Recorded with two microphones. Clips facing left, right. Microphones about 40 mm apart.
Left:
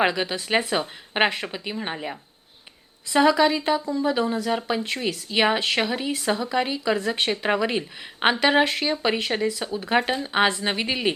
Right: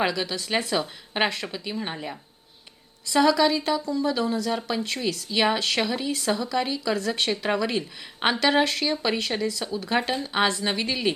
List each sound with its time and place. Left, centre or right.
0.0 s speech: left